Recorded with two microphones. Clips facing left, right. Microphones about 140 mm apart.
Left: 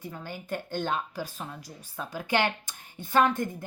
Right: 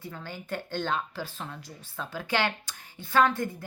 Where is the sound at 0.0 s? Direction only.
15° left (ahead or behind).